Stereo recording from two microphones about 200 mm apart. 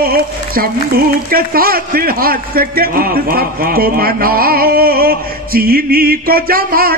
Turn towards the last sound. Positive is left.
turn(degrees=-50)  # may be behind; listen again after turning